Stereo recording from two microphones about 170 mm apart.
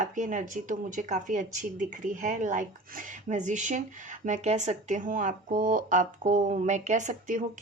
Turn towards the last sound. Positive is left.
turn(degrees=-50)  # may be behind; listen again after turning